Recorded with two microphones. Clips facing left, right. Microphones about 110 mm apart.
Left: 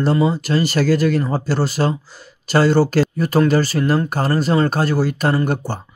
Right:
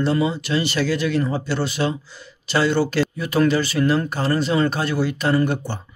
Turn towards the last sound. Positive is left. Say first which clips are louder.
# left 1 dB
turn(degrees=45)  # may be behind; listen again after turning